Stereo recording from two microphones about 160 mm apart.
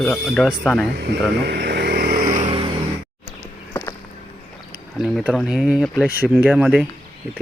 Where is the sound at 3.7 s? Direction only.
15° left (ahead or behind).